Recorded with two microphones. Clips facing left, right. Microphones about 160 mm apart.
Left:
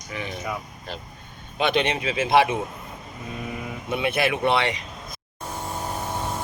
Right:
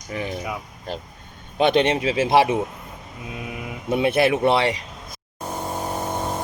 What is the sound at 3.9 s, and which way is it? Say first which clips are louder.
Speech: right 5 dB; 35° right (ahead or behind).